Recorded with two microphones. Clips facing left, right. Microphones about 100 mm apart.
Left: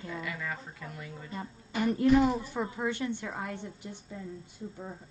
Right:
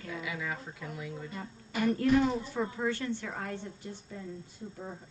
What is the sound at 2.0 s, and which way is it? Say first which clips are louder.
A woman's voice: left 4 dB; 15° left (ahead or behind).